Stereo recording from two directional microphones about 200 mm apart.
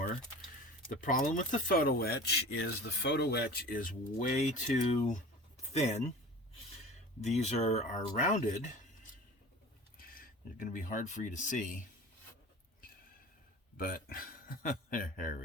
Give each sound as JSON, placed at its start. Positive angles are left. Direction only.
{"t": 0.9, "sound": "speech", "side_deg": 40}
{"t": 7.3, "sound": "speech", "side_deg": 35}
{"t": 10.0, "sound": "speech", "side_deg": 45}
{"t": 13.7, "sound": "speech", "side_deg": 45}